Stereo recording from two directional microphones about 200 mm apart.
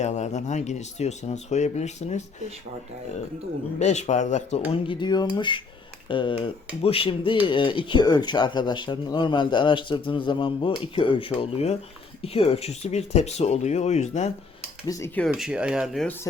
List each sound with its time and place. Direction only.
0.0 s speech: 35° left (ahead or behind)
3.8 s speech: 35° left (ahead or behind)
4.7 s speech: 25° left (ahead or behind)
14.8 s speech: 15° left (ahead or behind)
15.3 s speech: 5° right (ahead or behind)